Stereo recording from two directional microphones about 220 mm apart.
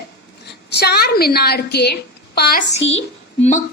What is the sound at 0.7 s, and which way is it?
A woman's voice, 50° left (ahead or behind).